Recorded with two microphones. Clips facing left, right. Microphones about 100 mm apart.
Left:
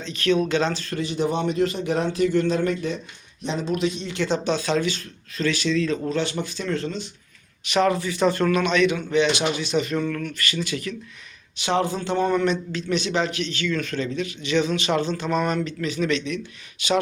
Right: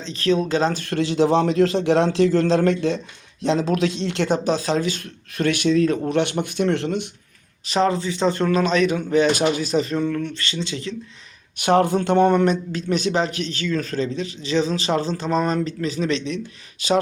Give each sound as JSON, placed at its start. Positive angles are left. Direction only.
{"t": 0.0, "sound": "a man's voice", "side_deg": -35}
{"t": 0.9, "sound": "a man's voice", "side_deg": -90}
{"t": 3.4, "sound": "a man's voice", "side_deg": -90}
{"t": 4.3, "sound": "a man's voice", "side_deg": -40}
{"t": 5.0, "sound": "speech", "side_deg": -65}
{"t": 6.1, "sound": "speech", "side_deg": -60}
{"t": 7.6, "sound": "speech", "side_deg": -30}
{"t": 8.6, "sound": "a man's voice", "side_deg": -40}
{"t": 11.5, "sound": "a man's voice", "side_deg": -50}